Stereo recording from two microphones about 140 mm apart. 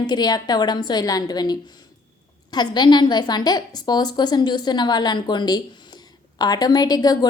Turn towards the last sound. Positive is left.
turn(degrees=30)  # may be behind; listen again after turning